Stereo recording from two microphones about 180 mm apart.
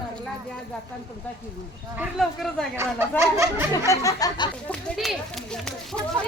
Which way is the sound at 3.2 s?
15° right (ahead or behind).